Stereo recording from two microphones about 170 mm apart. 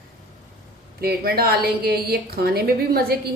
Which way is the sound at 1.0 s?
65° right (ahead or behind).